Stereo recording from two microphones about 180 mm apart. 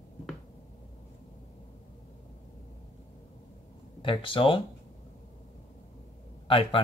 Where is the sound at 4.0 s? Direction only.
30° left (ahead or behind).